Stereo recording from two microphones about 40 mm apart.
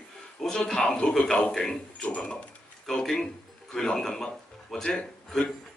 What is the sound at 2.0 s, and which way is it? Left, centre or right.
Speech, left.